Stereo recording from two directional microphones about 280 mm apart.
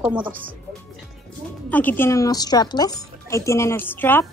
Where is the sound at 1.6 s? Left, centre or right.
Centre.